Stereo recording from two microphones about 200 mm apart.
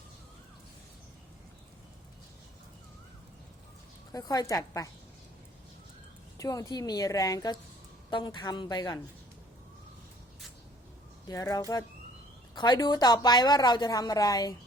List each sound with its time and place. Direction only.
4.1 s a woman's voice: 20° left (ahead or behind)
6.3 s a woman's voice: 15° left (ahead or behind)
11.3 s a woman's voice: 15° left (ahead or behind)